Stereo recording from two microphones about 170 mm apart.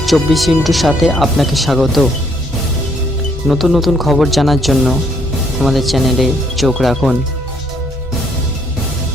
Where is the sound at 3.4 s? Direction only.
Centre (ahead or behind).